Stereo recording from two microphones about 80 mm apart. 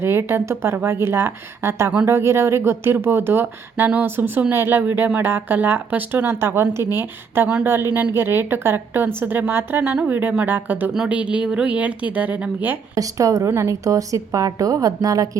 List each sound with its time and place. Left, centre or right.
0.0 s a woman's voice: right
9.8 s speech: centre
10.9 s a woman's voice: centre
13.0 s a woman's voice: right